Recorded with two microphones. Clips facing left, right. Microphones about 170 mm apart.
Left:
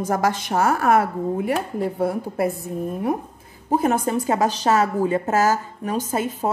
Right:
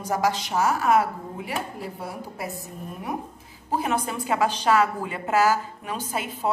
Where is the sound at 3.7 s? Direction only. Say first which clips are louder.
Left 6 dB; 45° left (ahead or behind).